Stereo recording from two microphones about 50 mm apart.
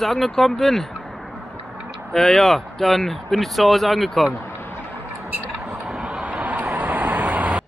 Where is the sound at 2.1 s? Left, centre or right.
Centre.